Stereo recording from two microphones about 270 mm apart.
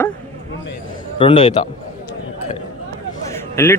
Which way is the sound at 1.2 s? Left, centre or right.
Centre.